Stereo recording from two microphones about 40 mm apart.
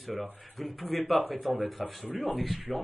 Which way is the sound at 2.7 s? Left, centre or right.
Centre.